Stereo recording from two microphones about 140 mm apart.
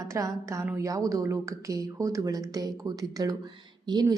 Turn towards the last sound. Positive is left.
turn(degrees=-30)  # may be behind; listen again after turning